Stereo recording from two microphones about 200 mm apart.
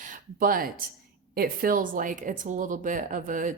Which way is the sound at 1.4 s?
45° right (ahead or behind).